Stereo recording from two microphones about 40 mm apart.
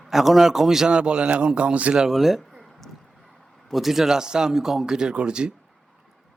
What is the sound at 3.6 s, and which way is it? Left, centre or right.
A man's voice, centre.